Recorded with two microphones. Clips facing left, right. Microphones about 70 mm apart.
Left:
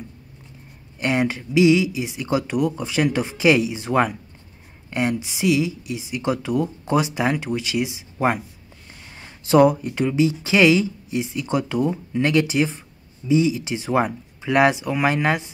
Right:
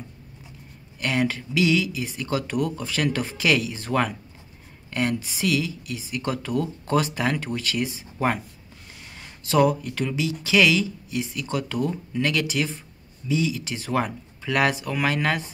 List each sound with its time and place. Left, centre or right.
0.9 s speech: left
9.2 s speech: left